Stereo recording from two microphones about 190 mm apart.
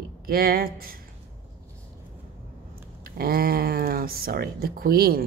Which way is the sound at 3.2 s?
50° right (ahead or behind).